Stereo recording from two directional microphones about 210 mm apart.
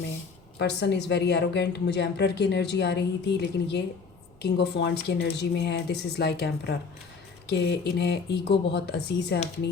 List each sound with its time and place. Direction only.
0.6 s a woman's voice: 55° left (ahead or behind)